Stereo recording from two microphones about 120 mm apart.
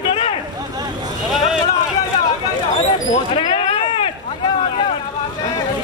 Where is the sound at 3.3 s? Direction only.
45° left (ahead or behind).